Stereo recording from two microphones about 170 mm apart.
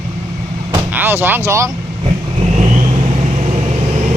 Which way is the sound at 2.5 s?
45° right (ahead or behind).